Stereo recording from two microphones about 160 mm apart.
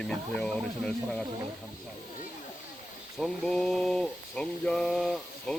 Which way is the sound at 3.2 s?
5° left (ahead or behind).